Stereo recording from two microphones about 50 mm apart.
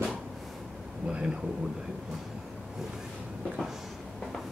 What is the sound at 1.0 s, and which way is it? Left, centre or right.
Speech, right.